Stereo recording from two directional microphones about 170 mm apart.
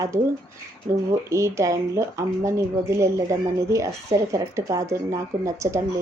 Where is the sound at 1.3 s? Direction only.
15° right (ahead or behind).